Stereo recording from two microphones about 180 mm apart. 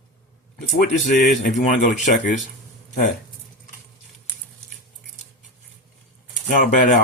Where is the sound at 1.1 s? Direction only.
45° left (ahead or behind).